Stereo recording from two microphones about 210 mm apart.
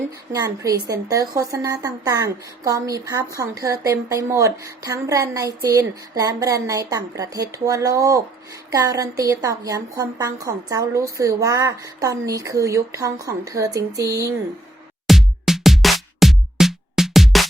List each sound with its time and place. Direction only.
0.3 s a woman's voice: 15° right (ahead or behind)
15.0 s music: centre (ahead or behind)